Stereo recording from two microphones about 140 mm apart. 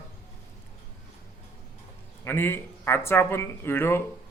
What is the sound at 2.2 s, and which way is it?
A man's voice, 15° left (ahead or behind).